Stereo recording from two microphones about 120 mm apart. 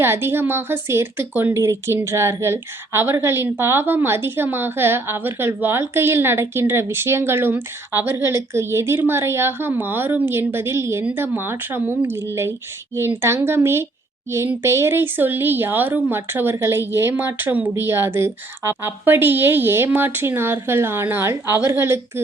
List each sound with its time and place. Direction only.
0.0 s a woman's voice: 20° right (ahead or behind)